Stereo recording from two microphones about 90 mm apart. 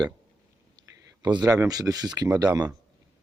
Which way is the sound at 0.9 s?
50° right (ahead or behind).